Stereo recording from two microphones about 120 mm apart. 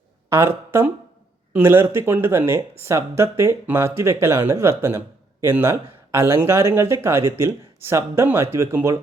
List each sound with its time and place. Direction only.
0.3 s speech: 20° right (ahead or behind)